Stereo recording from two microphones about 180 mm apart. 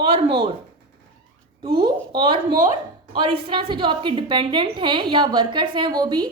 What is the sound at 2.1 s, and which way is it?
A woman's voice, 25° right (ahead or behind).